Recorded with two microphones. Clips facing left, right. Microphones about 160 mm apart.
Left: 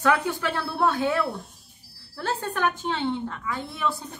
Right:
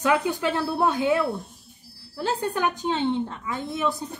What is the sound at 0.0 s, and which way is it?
A woman's voice, 15° right (ahead or behind).